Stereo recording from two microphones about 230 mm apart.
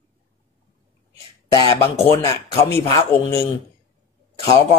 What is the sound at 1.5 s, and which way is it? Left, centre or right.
Speech, centre.